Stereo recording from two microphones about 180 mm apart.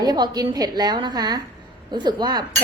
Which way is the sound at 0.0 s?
20° right (ahead or behind).